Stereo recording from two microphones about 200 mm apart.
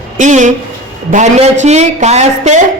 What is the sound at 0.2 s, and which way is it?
Speech, 35° right (ahead or behind).